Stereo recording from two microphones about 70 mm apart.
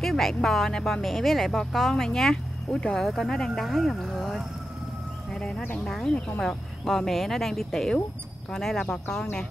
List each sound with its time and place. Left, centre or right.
0.0 s speech: centre
5.3 s a sound: centre
5.9 s speech: centre